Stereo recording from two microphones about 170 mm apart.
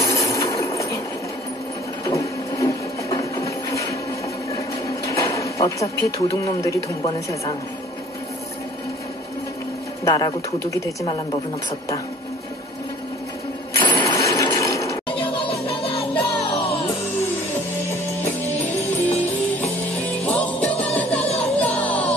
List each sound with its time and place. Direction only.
0.0 s a sound: 20° left (ahead or behind)
2.0 s printer: 20° left (ahead or behind)
4.5 s a sound: 20° left (ahead or behind)
7.1 s speech: 20° left (ahead or behind)
10.0 s speech: 20° left (ahead or behind)
13.7 s coin: 25° left (ahead or behind)
15.2 s music: 30° left (ahead or behind)
19.0 s music: 10° left (ahead or behind)